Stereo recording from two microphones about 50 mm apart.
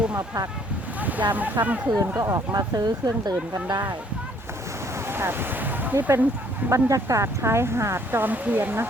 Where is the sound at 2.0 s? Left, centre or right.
Right.